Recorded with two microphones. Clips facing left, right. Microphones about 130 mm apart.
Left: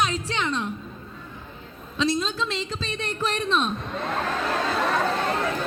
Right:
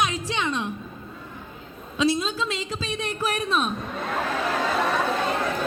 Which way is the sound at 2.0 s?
10° right (ahead or behind).